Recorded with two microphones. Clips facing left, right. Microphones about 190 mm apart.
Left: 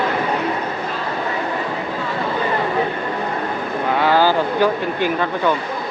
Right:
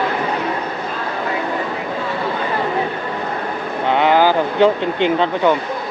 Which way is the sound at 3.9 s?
20° right (ahead or behind).